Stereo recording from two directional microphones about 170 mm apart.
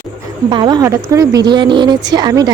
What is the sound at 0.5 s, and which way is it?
A woman's voice, 25° right (ahead or behind).